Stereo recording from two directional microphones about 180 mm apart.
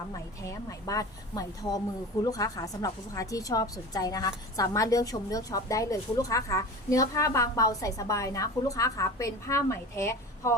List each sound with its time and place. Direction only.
0.4 s a woman's voice: 20° left (ahead or behind)